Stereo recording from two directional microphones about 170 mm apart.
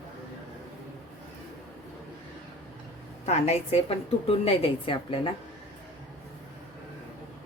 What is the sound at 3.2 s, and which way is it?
A woman's voice, 40° left (ahead or behind).